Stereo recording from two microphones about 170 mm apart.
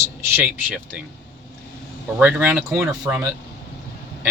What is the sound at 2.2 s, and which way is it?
Speech, 10° right (ahead or behind).